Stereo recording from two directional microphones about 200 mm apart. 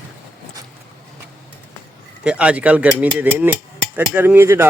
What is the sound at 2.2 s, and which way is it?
Speech, 5° right (ahead or behind).